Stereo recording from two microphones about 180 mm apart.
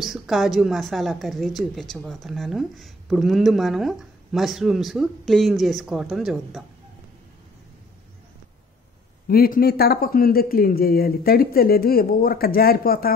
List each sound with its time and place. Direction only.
0.0 s speech: centre (ahead or behind)
9.3 s speech: 55° left (ahead or behind)